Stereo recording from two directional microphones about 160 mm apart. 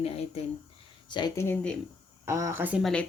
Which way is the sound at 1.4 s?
10° left (ahead or behind).